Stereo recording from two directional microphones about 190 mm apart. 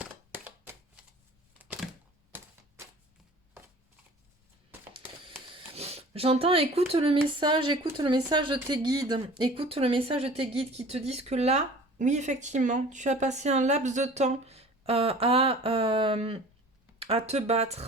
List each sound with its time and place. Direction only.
0.0 s a sound: 10° right (ahead or behind)
1.5 s typewriter: 5° right (ahead or behind)
5.2 s speech: 30° right (ahead or behind)